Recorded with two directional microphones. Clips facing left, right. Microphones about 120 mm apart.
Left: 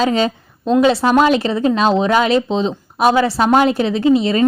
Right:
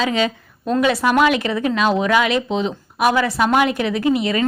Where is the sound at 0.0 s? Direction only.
35° left (ahead or behind).